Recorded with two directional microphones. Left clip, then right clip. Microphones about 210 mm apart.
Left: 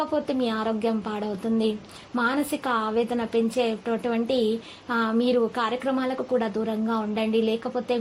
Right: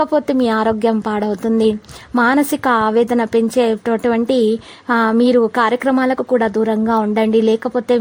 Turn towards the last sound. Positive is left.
turn(degrees=-45)  # may be behind; listen again after turning